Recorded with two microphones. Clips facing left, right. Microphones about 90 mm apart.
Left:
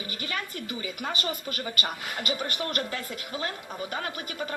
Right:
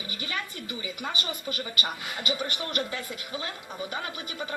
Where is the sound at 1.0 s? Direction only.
50° left (ahead or behind).